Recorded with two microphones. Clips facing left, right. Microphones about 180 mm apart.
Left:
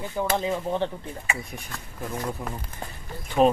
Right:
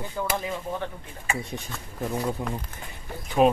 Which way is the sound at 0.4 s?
25° left (ahead or behind).